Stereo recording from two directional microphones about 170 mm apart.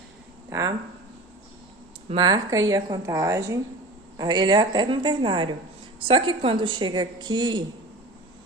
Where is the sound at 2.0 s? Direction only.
25° right (ahead or behind).